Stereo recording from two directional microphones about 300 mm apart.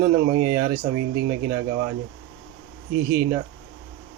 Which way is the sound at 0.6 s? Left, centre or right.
Right.